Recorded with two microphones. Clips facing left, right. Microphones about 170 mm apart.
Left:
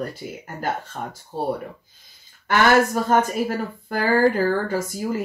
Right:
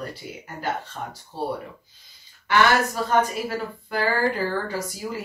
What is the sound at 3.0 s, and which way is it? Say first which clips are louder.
Speech: left 3 dB; 45° left (ahead or behind).